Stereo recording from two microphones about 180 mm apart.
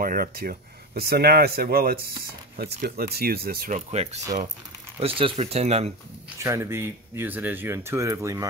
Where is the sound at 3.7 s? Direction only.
35° right (ahead or behind).